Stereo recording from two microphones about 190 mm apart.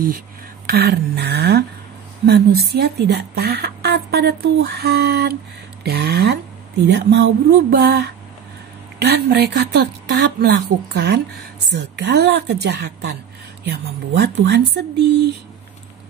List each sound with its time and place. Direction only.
0.7 s speech: 55° right (ahead or behind)